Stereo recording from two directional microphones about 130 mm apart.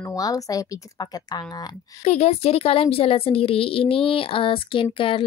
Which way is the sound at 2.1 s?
50° left (ahead or behind).